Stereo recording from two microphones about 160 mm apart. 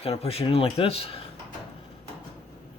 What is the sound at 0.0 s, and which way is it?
Speech, 40° left (ahead or behind).